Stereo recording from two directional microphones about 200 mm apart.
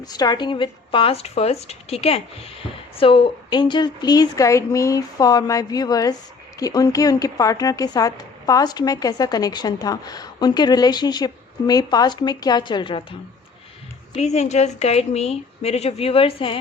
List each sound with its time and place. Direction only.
0.0 s speech: 20° left (ahead or behind)
14.2 s speech: 35° left (ahead or behind)